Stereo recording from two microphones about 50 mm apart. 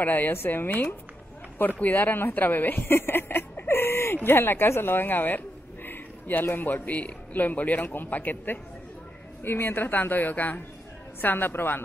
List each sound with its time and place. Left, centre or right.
0.0 s a man's voice: left
9.4 s a woman's voice: left